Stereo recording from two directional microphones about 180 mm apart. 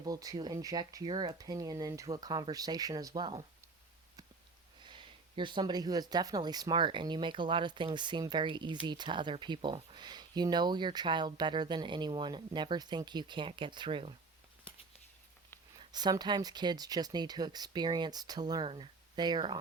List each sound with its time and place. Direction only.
0.0 s speech: 20° right (ahead or behind)
4.8 s speech: 25° right (ahead or behind)
15.9 s speech: 25° right (ahead or behind)